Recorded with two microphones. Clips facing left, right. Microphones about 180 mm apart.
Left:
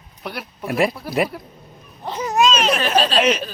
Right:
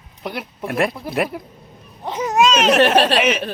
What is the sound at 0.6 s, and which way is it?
Speech, centre (ahead or behind).